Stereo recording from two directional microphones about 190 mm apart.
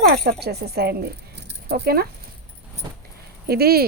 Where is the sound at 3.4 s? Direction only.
55° right (ahead or behind).